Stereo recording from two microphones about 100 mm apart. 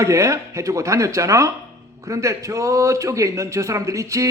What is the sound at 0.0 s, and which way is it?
Speech, 30° right (ahead or behind).